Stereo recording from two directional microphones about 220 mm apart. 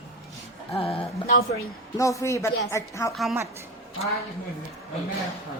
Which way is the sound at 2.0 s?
15° left (ahead or behind).